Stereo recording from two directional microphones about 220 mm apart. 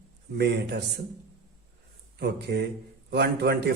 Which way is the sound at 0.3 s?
50° right (ahead or behind).